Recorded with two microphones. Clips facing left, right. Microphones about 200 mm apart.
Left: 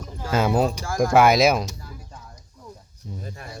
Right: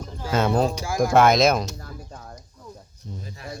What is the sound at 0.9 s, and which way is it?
Speech, 5° right (ahead or behind).